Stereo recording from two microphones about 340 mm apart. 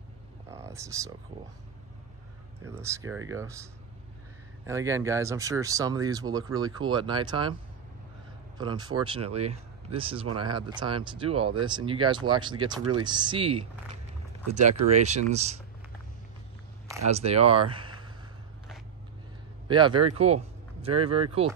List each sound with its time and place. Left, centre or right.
0.5 s a sound: centre
2.6 s speech: centre
4.6 s speech: centre
8.5 s speech: centre
17.1 s speech: centre
19.7 s speech: centre